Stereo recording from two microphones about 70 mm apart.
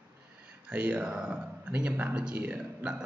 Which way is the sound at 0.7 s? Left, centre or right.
Centre.